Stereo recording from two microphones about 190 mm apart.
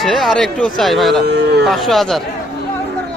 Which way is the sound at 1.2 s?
60° right (ahead or behind).